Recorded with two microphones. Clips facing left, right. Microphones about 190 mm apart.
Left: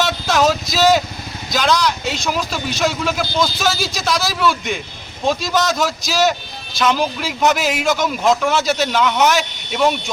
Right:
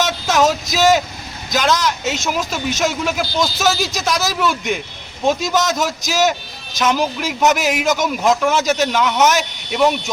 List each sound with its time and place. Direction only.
0.4 s a man's voice: 15° right (ahead or behind)